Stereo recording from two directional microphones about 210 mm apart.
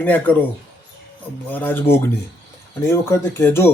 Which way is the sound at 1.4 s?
10° left (ahead or behind).